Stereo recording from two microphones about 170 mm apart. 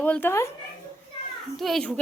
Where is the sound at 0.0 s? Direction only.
10° left (ahead or behind).